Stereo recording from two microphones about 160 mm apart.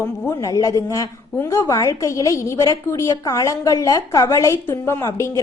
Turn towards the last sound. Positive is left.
turn(degrees=15)  # may be behind; listen again after turning